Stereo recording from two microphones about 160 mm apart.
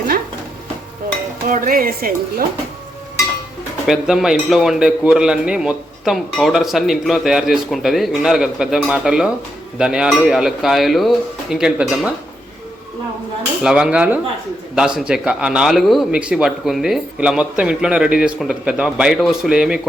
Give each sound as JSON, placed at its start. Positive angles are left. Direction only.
{"t": 1.5, "sound": "music", "side_deg": -55}
{"t": 3.8, "sound": "speech", "side_deg": -5}
{"t": 13.6, "sound": "speech", "side_deg": -5}